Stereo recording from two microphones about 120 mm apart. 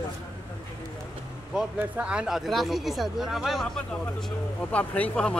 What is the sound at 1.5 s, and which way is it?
Speech, 5° right (ahead or behind).